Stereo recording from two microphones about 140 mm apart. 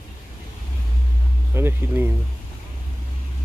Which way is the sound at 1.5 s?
15° right (ahead or behind).